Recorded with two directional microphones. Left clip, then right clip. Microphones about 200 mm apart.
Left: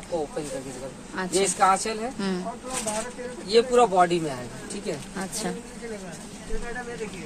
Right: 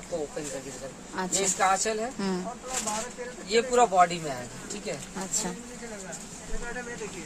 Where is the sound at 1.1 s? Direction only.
15° right (ahead or behind).